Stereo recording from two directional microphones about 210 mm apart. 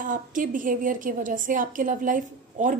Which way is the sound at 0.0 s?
40° right (ahead or behind).